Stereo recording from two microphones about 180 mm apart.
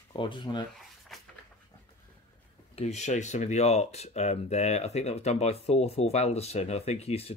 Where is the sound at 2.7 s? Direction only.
40° left (ahead or behind).